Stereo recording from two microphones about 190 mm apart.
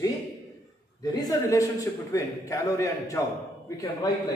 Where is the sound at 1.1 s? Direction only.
20° left (ahead or behind).